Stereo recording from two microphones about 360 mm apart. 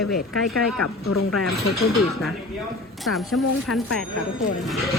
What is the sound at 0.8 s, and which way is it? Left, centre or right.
Speech, left.